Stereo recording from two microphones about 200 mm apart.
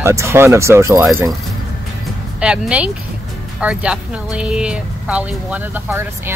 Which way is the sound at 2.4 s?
5° right (ahead or behind).